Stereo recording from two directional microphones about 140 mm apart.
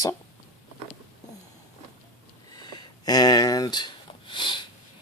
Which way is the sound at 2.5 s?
30° left (ahead or behind).